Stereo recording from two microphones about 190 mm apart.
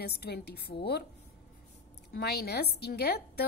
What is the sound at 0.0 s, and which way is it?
Speech, 55° left (ahead or behind).